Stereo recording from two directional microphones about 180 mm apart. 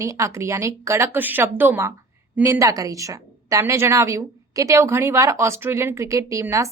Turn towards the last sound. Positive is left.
turn(degrees=-15)  # may be behind; listen again after turning